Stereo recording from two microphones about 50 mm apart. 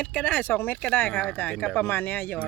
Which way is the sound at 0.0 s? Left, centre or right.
Left.